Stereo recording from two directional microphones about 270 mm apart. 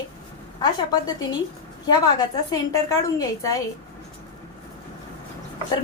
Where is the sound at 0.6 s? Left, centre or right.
Centre.